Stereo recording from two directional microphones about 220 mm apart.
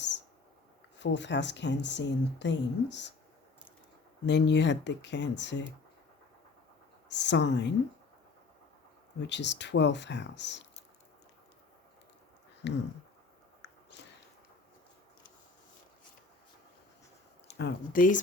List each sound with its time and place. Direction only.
0.9 s speech: 55° left (ahead or behind)
4.3 s speech: 50° left (ahead or behind)
7.1 s speech: 55° left (ahead or behind)
9.2 s speech: 50° left (ahead or behind)
12.6 s speech: 50° left (ahead or behind)
17.5 s speech: 50° left (ahead or behind)